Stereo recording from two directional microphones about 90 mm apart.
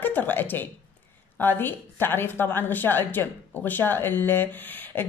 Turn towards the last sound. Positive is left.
turn(degrees=20)  # may be behind; listen again after turning